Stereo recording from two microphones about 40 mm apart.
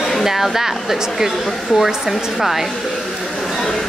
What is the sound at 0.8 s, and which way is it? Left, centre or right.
Speech, centre.